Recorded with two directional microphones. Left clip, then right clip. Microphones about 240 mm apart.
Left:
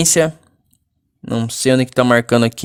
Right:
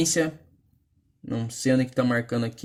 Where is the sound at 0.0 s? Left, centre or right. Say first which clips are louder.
Left 10 dB; left.